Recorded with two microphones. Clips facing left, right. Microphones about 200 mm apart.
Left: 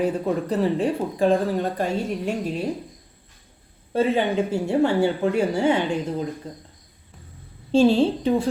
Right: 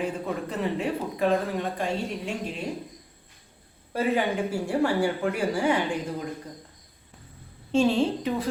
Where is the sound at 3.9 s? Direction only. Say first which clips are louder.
Left 4 dB; 25° left (ahead or behind).